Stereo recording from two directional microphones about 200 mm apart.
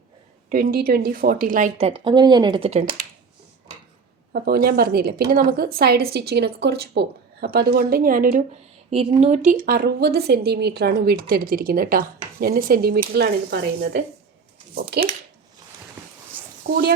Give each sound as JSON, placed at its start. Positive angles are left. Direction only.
{"t": 0.5, "sound": "a woman's voice", "side_deg": -45}
{"t": 1.9, "sound": "speech", "side_deg": -25}
{"t": 4.3, "sound": "a woman's voice", "side_deg": -50}
{"t": 8.9, "sound": "a woman's voice", "side_deg": -30}
{"t": 16.7, "sound": "speech", "side_deg": -35}